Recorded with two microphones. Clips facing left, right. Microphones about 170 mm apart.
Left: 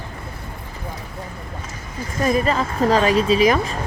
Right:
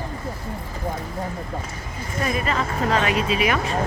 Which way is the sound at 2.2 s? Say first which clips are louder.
Left 5 dB; 35° left (ahead or behind).